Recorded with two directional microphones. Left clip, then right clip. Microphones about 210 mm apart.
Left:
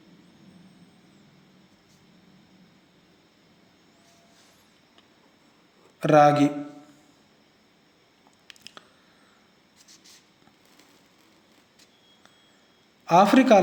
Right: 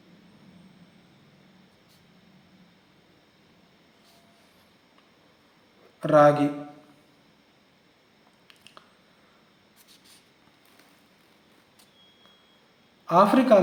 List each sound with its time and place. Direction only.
6.0 s speech: 25° left (ahead or behind)
8.4 s squish: 25° left (ahead or behind)
13.1 s speech: 25° left (ahead or behind)